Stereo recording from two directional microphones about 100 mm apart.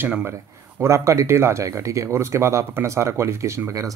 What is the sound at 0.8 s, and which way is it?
Speech, 30° right (ahead or behind).